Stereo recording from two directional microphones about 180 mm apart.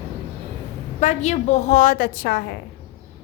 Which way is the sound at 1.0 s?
40° left (ahead or behind).